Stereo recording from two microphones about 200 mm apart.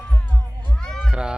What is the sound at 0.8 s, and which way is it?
Cat, 5° right (ahead or behind).